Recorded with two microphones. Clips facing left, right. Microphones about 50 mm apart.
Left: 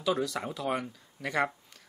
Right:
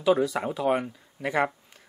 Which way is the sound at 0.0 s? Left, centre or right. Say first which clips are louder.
Right 7 dB; centre.